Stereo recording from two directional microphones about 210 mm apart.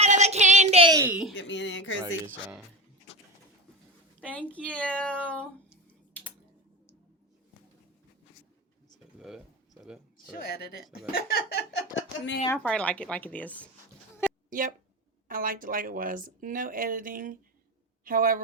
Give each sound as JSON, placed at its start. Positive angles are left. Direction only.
{"t": 0.0, "sound": "a sound", "side_deg": -30}
{"t": 1.0, "sound": "speech", "side_deg": -5}
{"t": 1.4, "sound": "speech", "side_deg": 60}
{"t": 4.2, "sound": "speech", "side_deg": 5}
{"t": 9.1, "sound": "a sound", "side_deg": 0}
{"t": 10.3, "sound": "speech", "side_deg": 50}
{"t": 12.5, "sound": "a woman's voice", "side_deg": 5}
{"t": 14.2, "sound": "a sound", "side_deg": 10}
{"t": 15.3, "sound": "a man's voice", "side_deg": -40}